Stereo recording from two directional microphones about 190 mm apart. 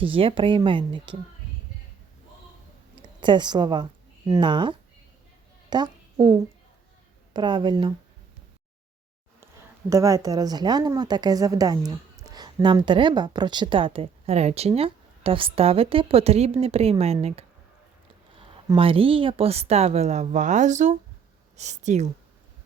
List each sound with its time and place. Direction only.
0.0 s a woman's voice: 30° right (ahead or behind)
3.2 s a woman's voice: 25° right (ahead or behind)
9.9 s a woman's voice: 15° right (ahead or behind); by 17.4 s 35° right (ahead or behind)
18.8 s a woman's voice: 30° right (ahead or behind)